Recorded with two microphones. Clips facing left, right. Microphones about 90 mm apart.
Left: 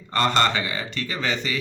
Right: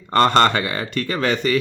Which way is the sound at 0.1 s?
50° right (ahead or behind).